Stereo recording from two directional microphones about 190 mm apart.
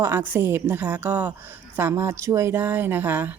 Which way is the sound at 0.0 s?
10° right (ahead or behind).